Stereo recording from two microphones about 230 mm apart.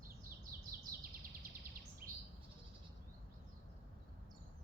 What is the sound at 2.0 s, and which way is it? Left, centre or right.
Bird, right.